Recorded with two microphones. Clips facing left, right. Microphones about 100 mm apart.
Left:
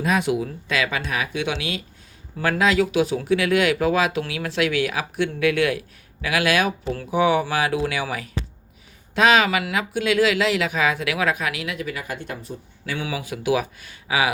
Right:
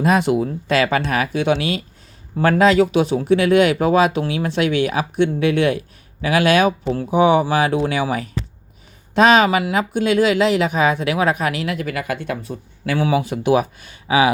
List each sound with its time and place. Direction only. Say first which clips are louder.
0.0 s speech: right 5 dB; 45° right (ahead or behind)
1.0 s speech: right 7 dB; 50° right (ahead or behind); by 2.9 s 35° right (ahead or behind)
2.9 s speech: right 4 dB; 25° right (ahead or behind)
9.1 s speech: right 4 dB; 30° right (ahead or behind)
11.4 s speech: right 5 dB; 40° right (ahead or behind); by 13.0 s 65° right (ahead or behind)
13.0 s speech: right 11 dB; 40° right (ahead or behind)